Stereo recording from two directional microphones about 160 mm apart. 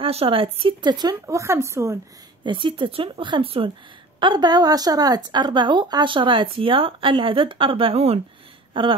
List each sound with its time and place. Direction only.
0.0 s speech: 35° right (ahead or behind); by 2.0 s 15° right (ahead or behind)
2.4 s speech: 30° right (ahead or behind)